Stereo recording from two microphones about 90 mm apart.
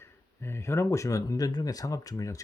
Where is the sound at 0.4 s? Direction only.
30° left (ahead or behind).